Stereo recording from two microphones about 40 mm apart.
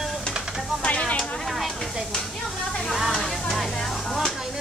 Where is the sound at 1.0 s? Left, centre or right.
Left.